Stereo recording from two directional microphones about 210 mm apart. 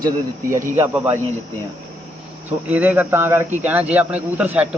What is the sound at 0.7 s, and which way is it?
Speech, 10° right (ahead or behind).